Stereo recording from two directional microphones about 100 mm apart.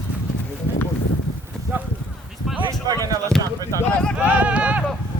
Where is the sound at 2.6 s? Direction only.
40° right (ahead or behind).